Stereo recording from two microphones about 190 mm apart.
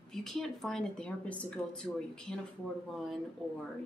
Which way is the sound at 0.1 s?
Centre (ahead or behind).